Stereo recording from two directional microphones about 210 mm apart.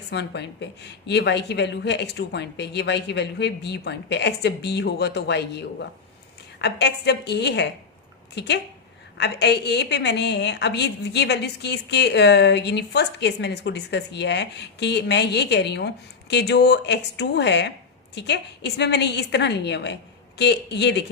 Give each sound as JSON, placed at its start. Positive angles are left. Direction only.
{"t": 0.1, "sound": "a woman's voice", "side_deg": 55}
{"t": 9.1, "sound": "a woman's voice", "side_deg": 55}